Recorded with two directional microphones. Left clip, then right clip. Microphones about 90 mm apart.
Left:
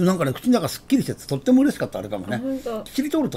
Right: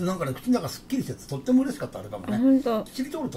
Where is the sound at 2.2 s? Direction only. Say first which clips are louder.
Right 4 dB; 20° right (ahead or behind).